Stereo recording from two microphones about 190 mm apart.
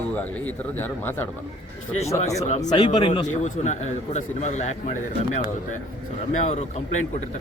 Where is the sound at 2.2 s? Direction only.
35° left (ahead or behind).